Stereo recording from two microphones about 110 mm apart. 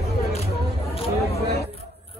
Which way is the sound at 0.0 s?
75° left (ahead or behind).